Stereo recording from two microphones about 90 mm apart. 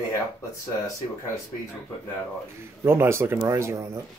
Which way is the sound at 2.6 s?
25° right (ahead or behind).